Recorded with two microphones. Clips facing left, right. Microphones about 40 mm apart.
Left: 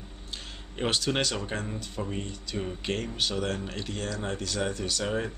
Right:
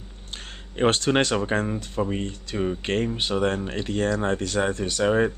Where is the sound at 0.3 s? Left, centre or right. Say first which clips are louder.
Right 3 dB; right.